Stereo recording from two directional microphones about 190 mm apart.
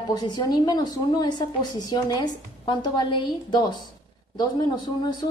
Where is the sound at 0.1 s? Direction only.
20° left (ahead or behind).